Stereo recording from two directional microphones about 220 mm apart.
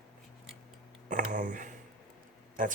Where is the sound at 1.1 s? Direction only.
35° right (ahead or behind).